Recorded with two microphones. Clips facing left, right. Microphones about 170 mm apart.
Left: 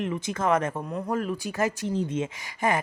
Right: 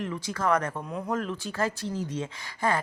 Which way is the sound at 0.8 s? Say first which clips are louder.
Left 2 dB; centre (ahead or behind).